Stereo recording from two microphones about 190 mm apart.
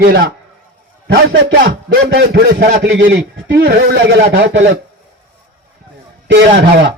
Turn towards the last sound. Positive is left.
turn(degrees=-65)  # may be behind; listen again after turning